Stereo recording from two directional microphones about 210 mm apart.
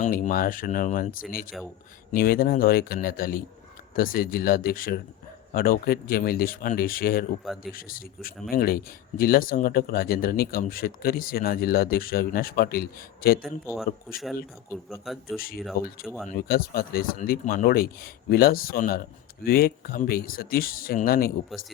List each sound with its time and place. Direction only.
0.0 s speech: 40° left (ahead or behind)
7.4 s speech: centre (ahead or behind)
7.7 s speech: 45° left (ahead or behind)
15.0 s speech: centre (ahead or behind)
16.3 s speech: 45° left (ahead or behind)